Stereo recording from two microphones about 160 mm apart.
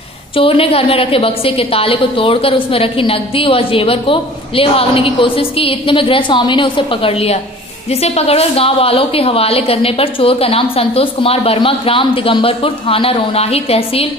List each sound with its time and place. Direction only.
0.4 s a woman's voice: 35° left (ahead or behind)